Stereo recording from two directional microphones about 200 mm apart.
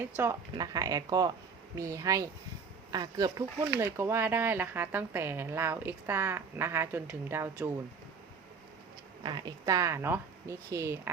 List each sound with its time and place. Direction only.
0.2 s a woman's voice: 15° right (ahead or behind)
9.2 s a woman's voice: 20° right (ahead or behind)